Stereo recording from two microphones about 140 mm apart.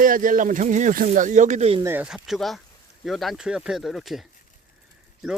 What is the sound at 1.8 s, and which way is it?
Speech, 15° right (ahead or behind).